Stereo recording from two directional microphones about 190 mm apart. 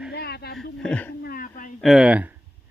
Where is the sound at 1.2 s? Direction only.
50° left (ahead or behind).